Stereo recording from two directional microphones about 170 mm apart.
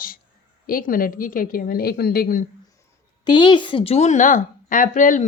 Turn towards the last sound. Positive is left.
turn(degrees=50)  # may be behind; listen again after turning